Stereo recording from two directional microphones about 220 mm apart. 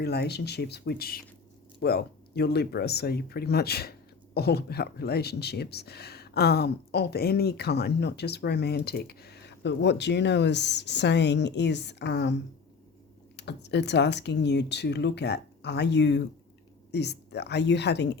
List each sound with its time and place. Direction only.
0.0 s speech: 45° left (ahead or behind)